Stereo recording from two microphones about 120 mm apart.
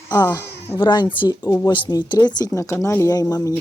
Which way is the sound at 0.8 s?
40° left (ahead or behind).